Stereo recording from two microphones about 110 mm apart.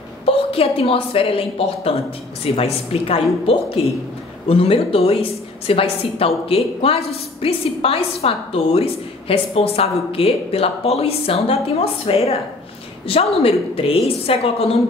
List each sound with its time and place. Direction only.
0.2 s a woman's voice: 60° left (ahead or behind)